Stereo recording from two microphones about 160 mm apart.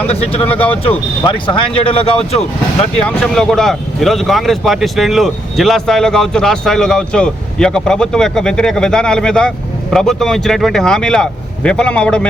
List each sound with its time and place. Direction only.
0.1 s speech: 40° left (ahead or behind)
3.1 s speech: 5° left (ahead or behind)